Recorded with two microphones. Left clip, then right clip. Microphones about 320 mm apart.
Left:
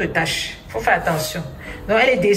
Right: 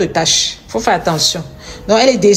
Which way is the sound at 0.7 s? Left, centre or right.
Right.